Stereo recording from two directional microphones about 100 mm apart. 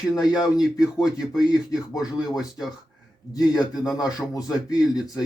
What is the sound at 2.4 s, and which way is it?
Speech, 5° right (ahead or behind).